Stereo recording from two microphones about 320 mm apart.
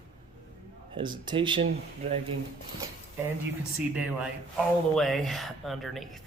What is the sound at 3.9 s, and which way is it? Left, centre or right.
Speech, centre.